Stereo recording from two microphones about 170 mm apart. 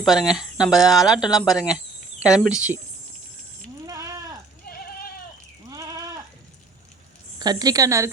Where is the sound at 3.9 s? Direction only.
20° right (ahead or behind).